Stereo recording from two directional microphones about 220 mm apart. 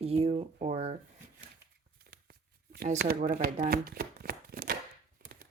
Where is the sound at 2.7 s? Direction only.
40° right (ahead or behind).